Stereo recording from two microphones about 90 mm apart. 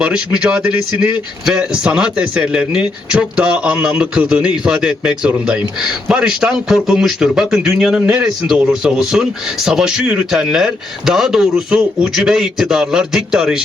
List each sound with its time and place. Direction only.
0.0 s a man's voice: 10° right (ahead or behind)